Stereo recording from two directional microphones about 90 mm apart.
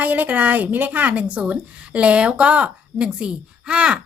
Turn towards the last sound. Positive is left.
turn(degrees=-10)  # may be behind; listen again after turning